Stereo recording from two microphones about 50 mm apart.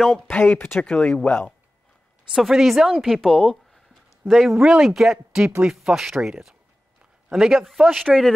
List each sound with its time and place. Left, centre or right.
0.0 s speech: centre; by 1.5 s left
2.3 s a man's voice: centre
3.3 s speech: centre
4.3 s a man's voice: centre
4.6 s speech: centre
7.3 s a man's voice: centre